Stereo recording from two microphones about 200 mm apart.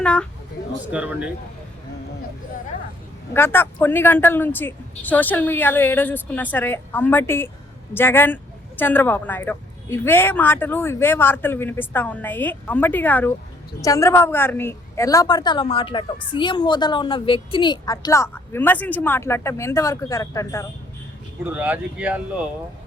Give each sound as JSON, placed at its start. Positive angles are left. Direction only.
{"t": 0.0, "sound": "a woman's voice", "side_deg": 5}
{"t": 0.9, "sound": "speech", "side_deg": -5}
{"t": 3.3, "sound": "a woman's voice", "side_deg": 10}
{"t": 21.4, "sound": "speech", "side_deg": -10}